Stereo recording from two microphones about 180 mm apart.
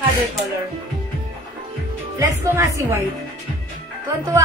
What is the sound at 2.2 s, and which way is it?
Speech, 15° right (ahead or behind).